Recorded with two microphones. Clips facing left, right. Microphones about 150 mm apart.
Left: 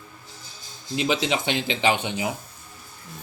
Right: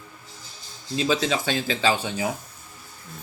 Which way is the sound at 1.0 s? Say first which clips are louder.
Right 1 dB; 20° left (ahead or behind).